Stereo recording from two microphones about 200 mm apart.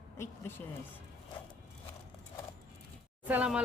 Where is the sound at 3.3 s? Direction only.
5° right (ahead or behind).